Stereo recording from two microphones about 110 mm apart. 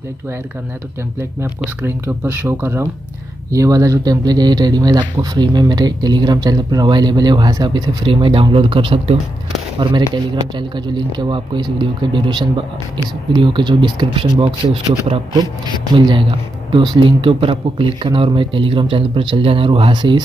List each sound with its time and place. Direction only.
1.6 s speech: 20° right (ahead or behind); by 9.1 s 55° right (ahead or behind)
9.8 s speech: 45° right (ahead or behind)
16.0 s speech: 50° right (ahead or behind)